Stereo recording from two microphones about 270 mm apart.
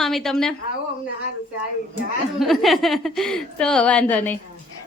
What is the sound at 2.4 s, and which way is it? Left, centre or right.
A woman's voice, centre.